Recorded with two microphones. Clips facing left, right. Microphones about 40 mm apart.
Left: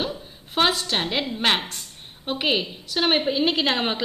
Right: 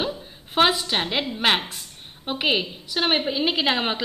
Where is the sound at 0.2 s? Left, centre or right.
Centre.